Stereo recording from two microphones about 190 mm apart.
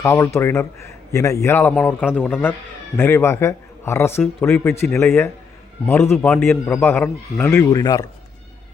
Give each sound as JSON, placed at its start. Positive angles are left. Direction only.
{"t": 0.0, "sound": "a man's voice", "side_deg": 15}